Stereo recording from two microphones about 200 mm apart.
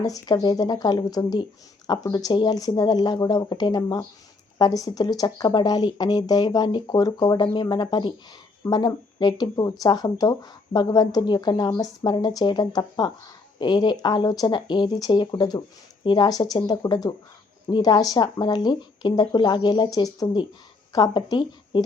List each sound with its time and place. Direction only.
0.0 s speech: 20° left (ahead or behind)